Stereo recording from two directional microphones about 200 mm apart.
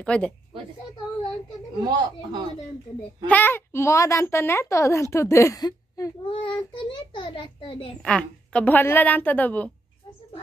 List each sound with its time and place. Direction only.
0.0 s speech: 5° left (ahead or behind)
1.9 s speech: 20° right (ahead or behind)
3.3 s a child's voice: 10° left (ahead or behind); by 7.9 s 25° left (ahead or behind)
8.0 s a child's voice: 5° left (ahead or behind)